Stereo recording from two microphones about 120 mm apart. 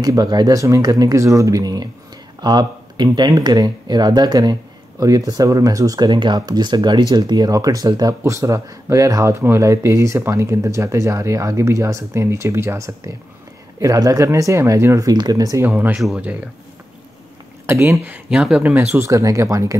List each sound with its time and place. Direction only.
0.0 s speech: 35° right (ahead or behind)
15.6 s speech: 15° right (ahead or behind)
17.6 s speech: 20° right (ahead or behind)